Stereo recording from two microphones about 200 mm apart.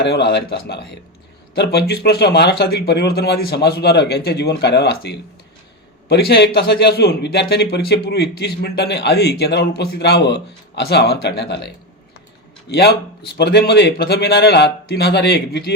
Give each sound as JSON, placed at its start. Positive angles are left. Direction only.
{"t": 0.0, "sound": "a man's voice", "side_deg": 55}